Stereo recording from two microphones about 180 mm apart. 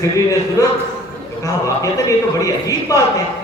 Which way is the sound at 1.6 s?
20° left (ahead or behind).